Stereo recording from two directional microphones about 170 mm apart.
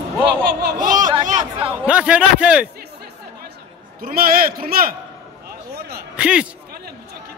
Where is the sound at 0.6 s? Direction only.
50° right (ahead or behind).